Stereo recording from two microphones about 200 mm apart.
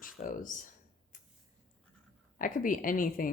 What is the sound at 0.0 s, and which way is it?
Speech, 45° left (ahead or behind).